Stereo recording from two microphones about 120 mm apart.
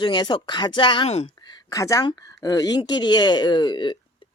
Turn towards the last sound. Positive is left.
turn(degrees=40)  # may be behind; listen again after turning